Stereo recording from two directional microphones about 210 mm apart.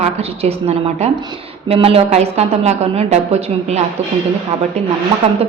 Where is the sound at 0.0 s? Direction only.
30° right (ahead or behind).